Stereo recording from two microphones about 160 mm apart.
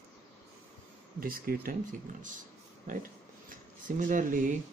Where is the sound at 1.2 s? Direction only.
65° right (ahead or behind).